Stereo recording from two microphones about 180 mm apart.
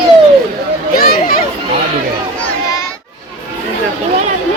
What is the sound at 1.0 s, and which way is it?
Children playing, 55° left (ahead or behind).